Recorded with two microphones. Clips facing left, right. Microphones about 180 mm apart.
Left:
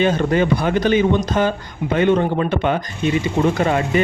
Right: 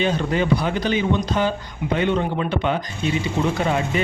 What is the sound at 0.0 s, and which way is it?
A man's voice, 50° left (ahead or behind).